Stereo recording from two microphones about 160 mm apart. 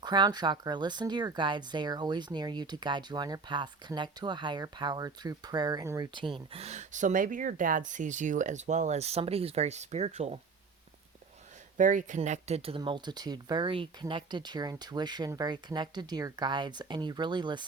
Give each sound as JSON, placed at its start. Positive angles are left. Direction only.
{"t": 0.0, "sound": "speech", "side_deg": -25}
{"t": 11.8, "sound": "speech", "side_deg": -55}